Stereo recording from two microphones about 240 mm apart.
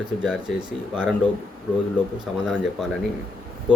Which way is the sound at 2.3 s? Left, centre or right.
Centre.